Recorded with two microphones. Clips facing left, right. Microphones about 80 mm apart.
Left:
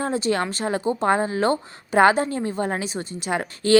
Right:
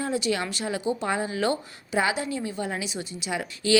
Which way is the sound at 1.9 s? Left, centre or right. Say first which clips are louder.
Left 9 dB; left.